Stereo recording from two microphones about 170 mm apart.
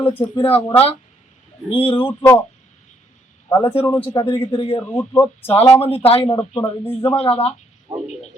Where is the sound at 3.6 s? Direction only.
35° left (ahead or behind).